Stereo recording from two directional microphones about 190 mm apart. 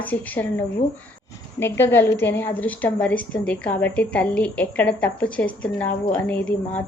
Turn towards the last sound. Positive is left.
turn(degrees=10)  # may be behind; listen again after turning